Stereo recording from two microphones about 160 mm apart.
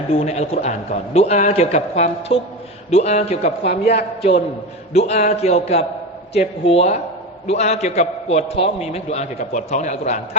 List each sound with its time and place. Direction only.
0.1 s a man's voice: 40° left (ahead or behind)